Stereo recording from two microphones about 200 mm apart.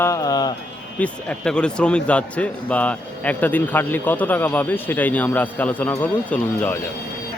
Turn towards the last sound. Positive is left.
turn(degrees=5)  # may be behind; listen again after turning